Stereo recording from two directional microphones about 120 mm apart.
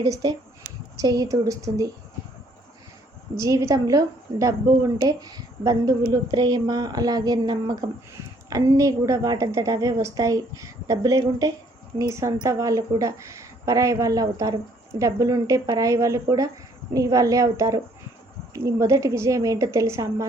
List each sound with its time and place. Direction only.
0.0 s a woman's voice: 35° right (ahead or behind)
3.3 s a woman's voice: 25° right (ahead or behind)